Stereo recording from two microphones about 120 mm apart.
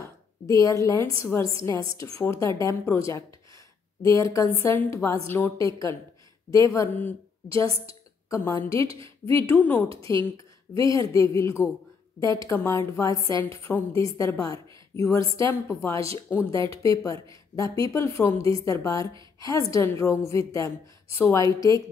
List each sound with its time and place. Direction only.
0.0 s a woman's voice: 25° left (ahead or behind)
4.2 s a woman's voice: 25° left (ahead or behind)
8.7 s a woman's voice: 50° right (ahead or behind)
9.3 s a woman's voice: 20° left (ahead or behind)
9.8 s a woman's voice: 50° right (ahead or behind)
10.8 s a woman's voice: 25° left (ahead or behind)
13.7 s a woman's voice: 5° left (ahead or behind)
14.0 s a woman's voice: 25° left (ahead or behind)